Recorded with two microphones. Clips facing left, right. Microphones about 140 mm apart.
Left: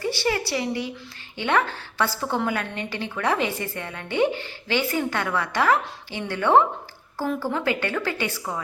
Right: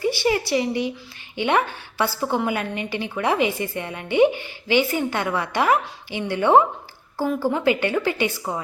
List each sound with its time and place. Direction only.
0.0 s a woman's voice: 15° right (ahead or behind)